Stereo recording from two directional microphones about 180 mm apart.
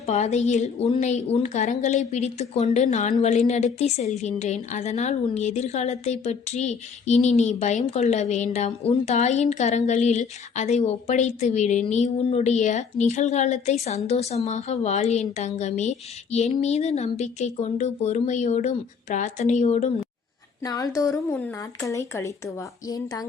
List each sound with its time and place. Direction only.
0.0 s a woman's voice: 40° left (ahead or behind)
20.7 s speech: 20° left (ahead or behind)